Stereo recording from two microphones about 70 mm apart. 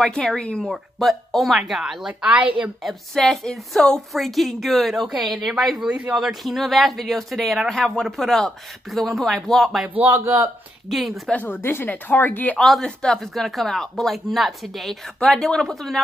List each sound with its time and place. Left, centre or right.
0.0 s speech: centre
0.7 s speech: centre
2.2 s a woman's voice: centre
2.8 s speech: centre
5.9 s speech: centre
6.1 s speech: centre
9.9 s a woman's voice: right
10.9 s speech: centre
11.4 s speech: left
12.5 s speech: centre
15.1 s speech: centre